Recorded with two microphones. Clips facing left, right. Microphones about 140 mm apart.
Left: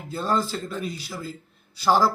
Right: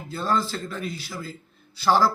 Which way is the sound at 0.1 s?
15° left (ahead or behind).